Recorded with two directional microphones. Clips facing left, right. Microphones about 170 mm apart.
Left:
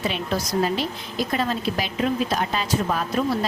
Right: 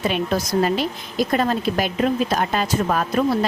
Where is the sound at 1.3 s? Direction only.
50° right (ahead or behind).